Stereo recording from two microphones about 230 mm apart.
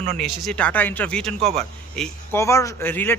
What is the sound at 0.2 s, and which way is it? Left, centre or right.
A man's voice, centre.